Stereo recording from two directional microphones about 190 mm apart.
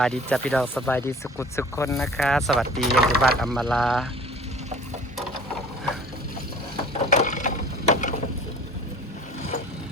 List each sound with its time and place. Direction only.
0.0 s speech: 5° left (ahead or behind)
2.0 s speech: centre (ahead or behind)
7.1 s a sound: 40° left (ahead or behind)